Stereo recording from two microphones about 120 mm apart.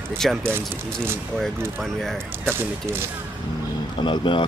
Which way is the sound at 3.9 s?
45° left (ahead or behind).